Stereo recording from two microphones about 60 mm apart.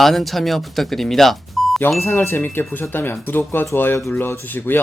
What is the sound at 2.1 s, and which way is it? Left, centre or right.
Speech, left.